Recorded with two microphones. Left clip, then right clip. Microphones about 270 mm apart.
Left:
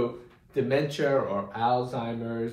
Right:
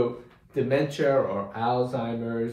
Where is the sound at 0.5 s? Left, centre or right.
Centre.